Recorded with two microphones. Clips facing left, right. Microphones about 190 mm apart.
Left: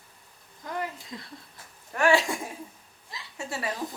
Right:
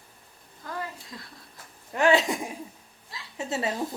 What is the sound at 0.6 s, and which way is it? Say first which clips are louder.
Speech: left 2 dB; 20° left (ahead or behind).